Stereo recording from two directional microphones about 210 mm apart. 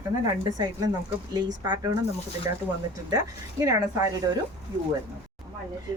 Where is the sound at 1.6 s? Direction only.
20° right (ahead or behind).